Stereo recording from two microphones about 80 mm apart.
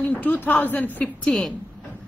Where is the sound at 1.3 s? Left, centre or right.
Centre.